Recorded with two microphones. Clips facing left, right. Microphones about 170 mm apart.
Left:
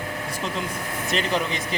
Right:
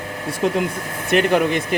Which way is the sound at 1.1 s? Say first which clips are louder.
Right 9 dB; 60° right (ahead or behind).